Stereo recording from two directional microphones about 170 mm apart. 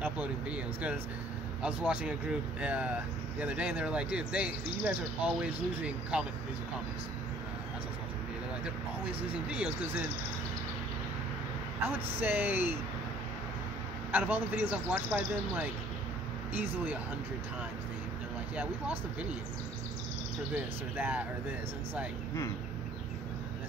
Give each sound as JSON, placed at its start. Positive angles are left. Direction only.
{"t": 0.0, "sound": "speech", "side_deg": -10}
{"t": 9.0, "sound": "speech", "side_deg": -10}
{"t": 11.9, "sound": "speech", "side_deg": -10}
{"t": 14.1, "sound": "speech", "side_deg": -10}
{"t": 20.9, "sound": "speech", "side_deg": -10}